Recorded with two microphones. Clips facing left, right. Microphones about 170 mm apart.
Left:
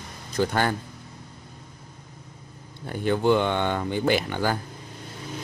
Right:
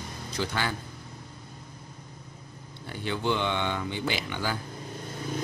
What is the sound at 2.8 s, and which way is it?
Speech, 50° left (ahead or behind).